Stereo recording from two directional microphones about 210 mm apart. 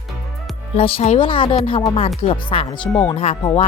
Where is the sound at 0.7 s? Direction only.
30° left (ahead or behind).